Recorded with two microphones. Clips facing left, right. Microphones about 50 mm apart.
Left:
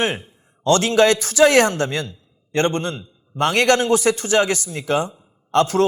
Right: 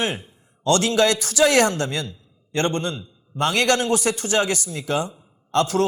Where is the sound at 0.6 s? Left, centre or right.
Left.